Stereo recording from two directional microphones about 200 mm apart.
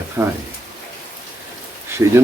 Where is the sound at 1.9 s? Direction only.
10° right (ahead or behind).